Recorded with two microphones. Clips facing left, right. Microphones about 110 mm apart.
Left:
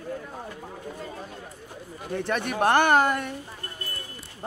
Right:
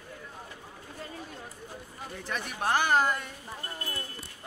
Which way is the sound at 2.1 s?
65° left (ahead or behind).